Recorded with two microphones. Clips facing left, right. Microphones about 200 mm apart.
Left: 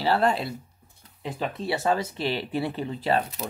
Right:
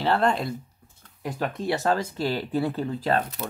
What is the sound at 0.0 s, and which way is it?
Speech, 5° left (ahead or behind).